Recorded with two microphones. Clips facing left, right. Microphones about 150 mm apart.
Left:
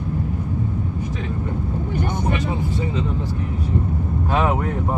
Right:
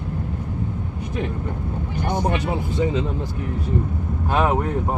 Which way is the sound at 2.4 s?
70° right (ahead or behind).